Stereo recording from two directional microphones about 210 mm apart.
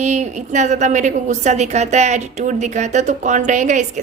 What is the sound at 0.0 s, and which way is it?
A woman's voice, 35° right (ahead or behind).